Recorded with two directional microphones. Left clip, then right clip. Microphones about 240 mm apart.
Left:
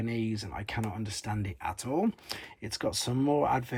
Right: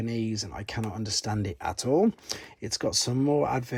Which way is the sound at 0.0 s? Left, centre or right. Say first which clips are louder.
Right 2 dB; centre.